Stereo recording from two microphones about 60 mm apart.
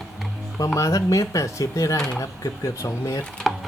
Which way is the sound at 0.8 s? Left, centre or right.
Left.